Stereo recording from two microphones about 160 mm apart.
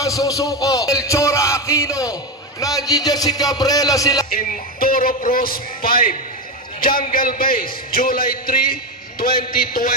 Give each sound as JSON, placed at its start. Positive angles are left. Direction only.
{"t": 0.0, "sound": "a man's voice", "side_deg": 20}
{"t": 0.9, "sound": "music", "side_deg": 20}
{"t": 2.6, "sound": "a man's voice", "side_deg": 25}
{"t": 4.3, "sound": "a man's voice", "side_deg": 60}